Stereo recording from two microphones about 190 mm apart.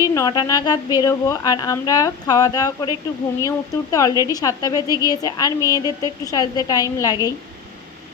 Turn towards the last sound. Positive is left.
turn(degrees=20)  # may be behind; listen again after turning